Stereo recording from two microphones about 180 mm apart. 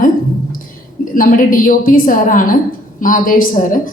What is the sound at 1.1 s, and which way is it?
A woman's voice, 50° left (ahead or behind).